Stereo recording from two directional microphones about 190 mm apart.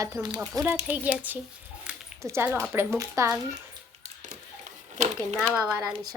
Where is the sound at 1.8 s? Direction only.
15° right (ahead or behind).